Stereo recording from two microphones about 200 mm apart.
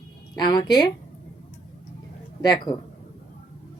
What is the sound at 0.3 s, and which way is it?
Speech, 20° left (ahead or behind).